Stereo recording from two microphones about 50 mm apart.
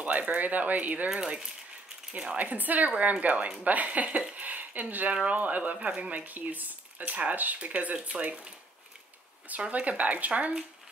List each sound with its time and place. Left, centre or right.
0.0 s speech: right
1.1 s speech: centre
2.1 s speech: right
9.5 s speech: right